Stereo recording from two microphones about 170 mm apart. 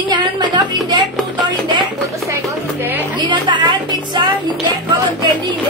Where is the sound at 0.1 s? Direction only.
25° right (ahead or behind).